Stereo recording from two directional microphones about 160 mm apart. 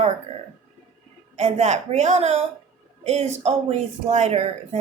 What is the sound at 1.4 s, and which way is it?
A woman's voice, 45° right (ahead or behind).